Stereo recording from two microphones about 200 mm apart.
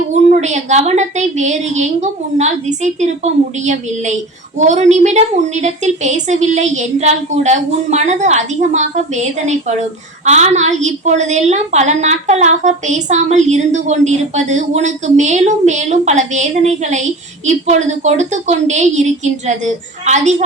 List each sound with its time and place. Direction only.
0.1 s a woman's voice: 35° right (ahead or behind)